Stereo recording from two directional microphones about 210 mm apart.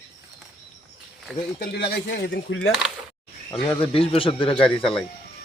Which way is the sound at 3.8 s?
25° left (ahead or behind).